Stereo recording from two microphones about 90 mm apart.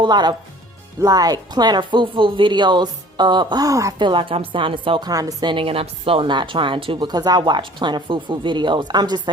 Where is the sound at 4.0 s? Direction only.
70° right (ahead or behind).